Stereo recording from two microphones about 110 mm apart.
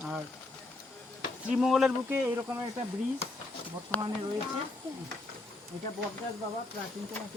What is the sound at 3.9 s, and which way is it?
Speech, 15° left (ahead or behind).